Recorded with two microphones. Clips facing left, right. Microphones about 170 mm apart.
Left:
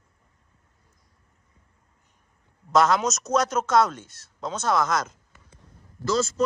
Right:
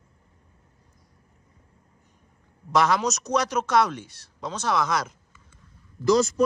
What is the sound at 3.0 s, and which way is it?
Speech, centre (ahead or behind).